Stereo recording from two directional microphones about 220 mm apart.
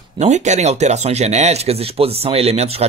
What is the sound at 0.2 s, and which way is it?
Speech, 30° right (ahead or behind).